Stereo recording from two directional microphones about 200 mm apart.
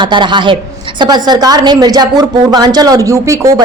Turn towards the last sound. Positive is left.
turn(degrees=-15)  # may be behind; listen again after turning